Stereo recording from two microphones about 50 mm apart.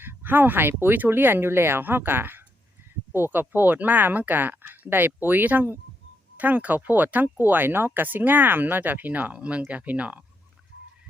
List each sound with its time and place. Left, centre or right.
0.0 s speech: right